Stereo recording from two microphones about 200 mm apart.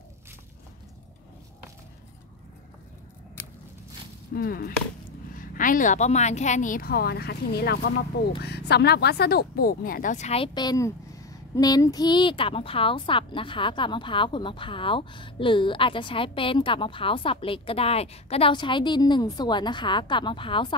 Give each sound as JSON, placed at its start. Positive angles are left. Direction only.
{"t": 4.3, "sound": "a woman's voice", "side_deg": 50}